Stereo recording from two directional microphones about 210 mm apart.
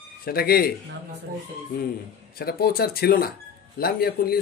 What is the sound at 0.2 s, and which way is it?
Speech, 45° left (ahead or behind).